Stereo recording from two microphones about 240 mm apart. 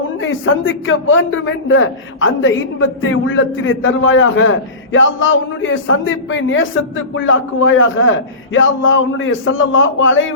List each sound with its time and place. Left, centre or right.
0.2 s a man's voice: left